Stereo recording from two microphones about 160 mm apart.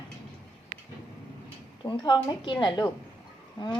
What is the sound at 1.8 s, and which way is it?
Speech, 30° left (ahead or behind).